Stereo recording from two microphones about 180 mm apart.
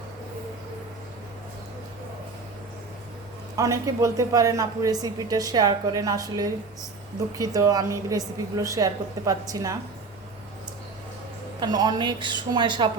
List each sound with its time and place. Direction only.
3.5 s a woman's voice: 15° right (ahead or behind)
11.6 s a woman's voice: 20° right (ahead or behind)